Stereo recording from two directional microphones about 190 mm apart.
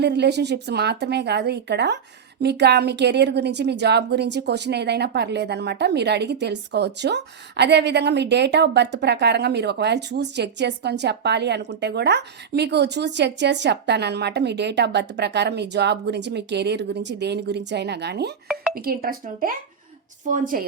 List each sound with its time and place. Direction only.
0.0 s a woman's voice: 60° right (ahead or behind); by 20.7 s 45° right (ahead or behind)